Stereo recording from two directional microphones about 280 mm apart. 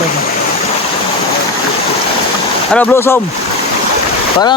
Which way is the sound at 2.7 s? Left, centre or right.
Centre.